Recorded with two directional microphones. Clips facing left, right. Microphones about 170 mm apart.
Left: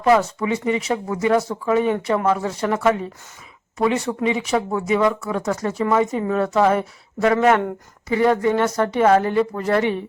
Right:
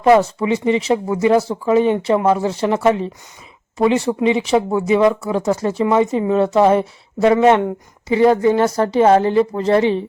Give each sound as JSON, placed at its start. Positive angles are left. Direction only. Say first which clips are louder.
{"t": 0.0, "sound": "speech", "louder": "right 4 dB", "side_deg": -30}